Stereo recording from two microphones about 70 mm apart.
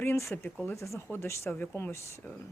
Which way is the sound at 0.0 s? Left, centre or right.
Left.